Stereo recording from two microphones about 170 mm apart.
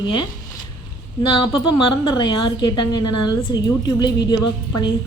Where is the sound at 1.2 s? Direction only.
30° left (ahead or behind).